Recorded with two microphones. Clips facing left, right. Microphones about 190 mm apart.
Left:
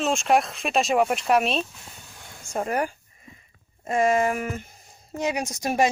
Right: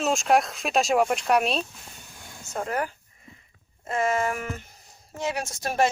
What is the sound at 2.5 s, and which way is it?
Speech, 15° left (ahead or behind).